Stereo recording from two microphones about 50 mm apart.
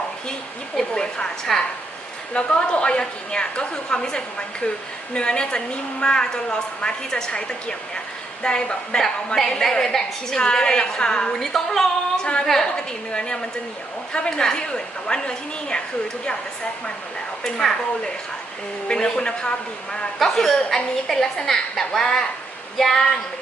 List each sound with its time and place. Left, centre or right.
0.9 s a woman's voice: centre
11.3 s a woman's voice: centre
12.2 s a woman's voice: centre
17.4 s a woman's voice: centre